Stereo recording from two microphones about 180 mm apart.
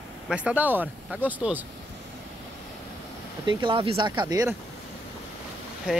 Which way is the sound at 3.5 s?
25° right (ahead or behind).